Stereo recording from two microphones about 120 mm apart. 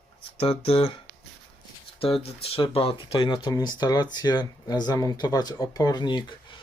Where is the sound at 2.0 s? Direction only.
55° left (ahead or behind).